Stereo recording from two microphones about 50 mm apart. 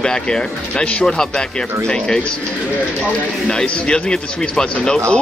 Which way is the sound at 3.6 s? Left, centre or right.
Centre.